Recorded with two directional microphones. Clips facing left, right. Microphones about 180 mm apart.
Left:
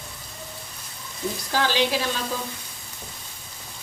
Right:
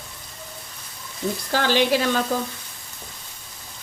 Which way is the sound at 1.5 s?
55° right (ahead or behind).